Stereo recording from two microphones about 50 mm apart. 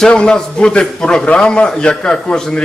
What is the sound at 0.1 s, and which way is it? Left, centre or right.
A man's voice, centre.